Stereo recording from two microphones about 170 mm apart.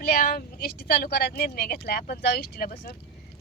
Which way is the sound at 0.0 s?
55° left (ahead or behind).